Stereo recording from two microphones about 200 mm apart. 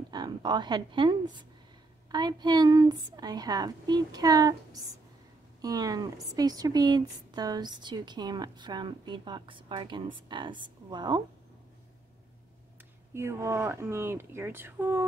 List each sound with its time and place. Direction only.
0.1 s a woman's voice: 20° right (ahead or behind)
13.1 s speech: 15° right (ahead or behind)